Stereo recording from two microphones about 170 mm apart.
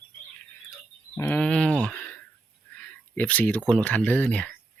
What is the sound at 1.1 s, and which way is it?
Speech, 10° left (ahead or behind).